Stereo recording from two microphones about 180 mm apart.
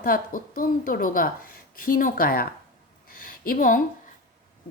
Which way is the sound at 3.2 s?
50° left (ahead or behind).